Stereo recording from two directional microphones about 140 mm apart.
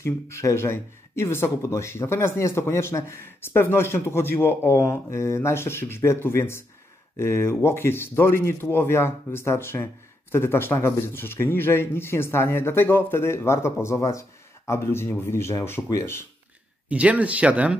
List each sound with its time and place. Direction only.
0.0 s speech: 20° left (ahead or behind)
16.9 s speech: 10° right (ahead or behind)